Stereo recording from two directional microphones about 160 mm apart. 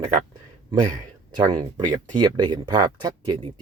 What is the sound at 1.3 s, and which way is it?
Speech, 25° right (ahead or behind).